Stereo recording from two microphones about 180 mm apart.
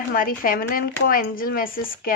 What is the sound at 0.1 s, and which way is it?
Speech, 50° left (ahead or behind).